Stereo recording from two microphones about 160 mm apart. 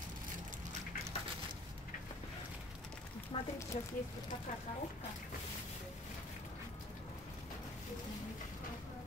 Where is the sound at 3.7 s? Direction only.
45° left (ahead or behind).